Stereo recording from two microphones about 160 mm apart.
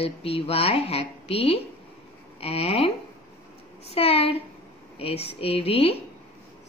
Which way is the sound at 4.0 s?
35° left (ahead or behind).